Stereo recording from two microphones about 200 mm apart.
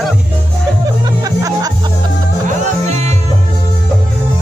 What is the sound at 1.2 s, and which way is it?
Music, 15° right (ahead or behind).